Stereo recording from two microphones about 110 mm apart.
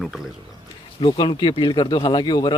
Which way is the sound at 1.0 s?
45° left (ahead or behind).